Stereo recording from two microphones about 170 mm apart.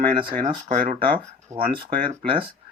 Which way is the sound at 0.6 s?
45° right (ahead or behind).